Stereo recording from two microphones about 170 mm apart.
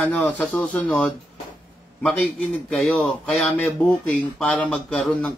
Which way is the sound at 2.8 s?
5° left (ahead or behind).